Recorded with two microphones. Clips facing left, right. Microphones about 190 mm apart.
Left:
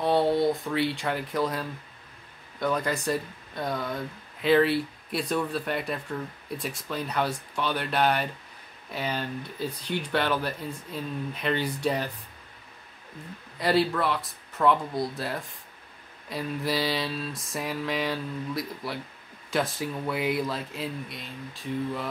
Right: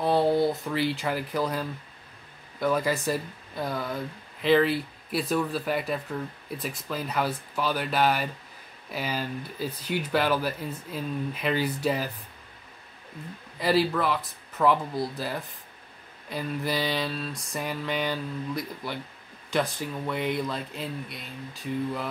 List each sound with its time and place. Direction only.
0.0 s speech: 5° right (ahead or behind)
13.6 s speech: centre (ahead or behind)